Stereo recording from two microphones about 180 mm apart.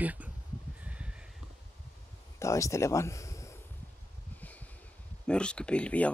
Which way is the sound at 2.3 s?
15° left (ahead or behind).